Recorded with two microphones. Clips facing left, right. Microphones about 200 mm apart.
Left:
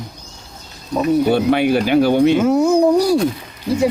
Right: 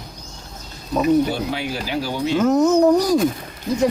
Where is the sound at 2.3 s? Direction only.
10° left (ahead or behind).